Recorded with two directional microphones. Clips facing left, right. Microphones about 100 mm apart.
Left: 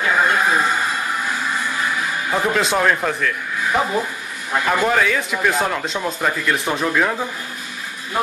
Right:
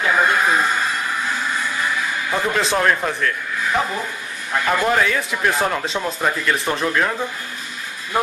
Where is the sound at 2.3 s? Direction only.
5° left (ahead or behind).